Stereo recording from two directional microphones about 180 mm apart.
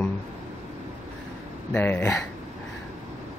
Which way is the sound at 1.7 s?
10° left (ahead or behind).